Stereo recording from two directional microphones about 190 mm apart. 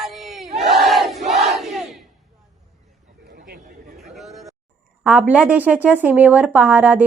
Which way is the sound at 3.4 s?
55° right (ahead or behind).